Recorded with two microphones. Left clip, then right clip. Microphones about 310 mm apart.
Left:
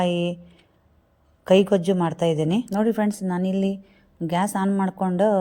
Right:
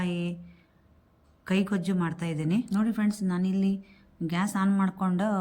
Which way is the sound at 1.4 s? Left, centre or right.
Centre.